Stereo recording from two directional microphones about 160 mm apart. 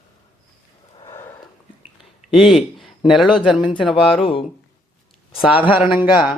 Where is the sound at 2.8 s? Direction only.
Centre (ahead or behind).